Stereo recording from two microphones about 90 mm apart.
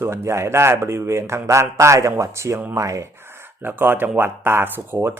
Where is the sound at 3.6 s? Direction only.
25° right (ahead or behind).